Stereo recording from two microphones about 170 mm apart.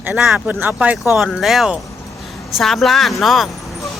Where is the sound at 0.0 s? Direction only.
5° right (ahead or behind).